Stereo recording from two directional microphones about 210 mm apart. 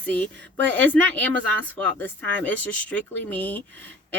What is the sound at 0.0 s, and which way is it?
Speech, 5° left (ahead or behind).